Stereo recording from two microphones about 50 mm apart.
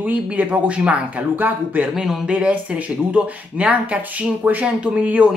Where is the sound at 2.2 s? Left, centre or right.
Right.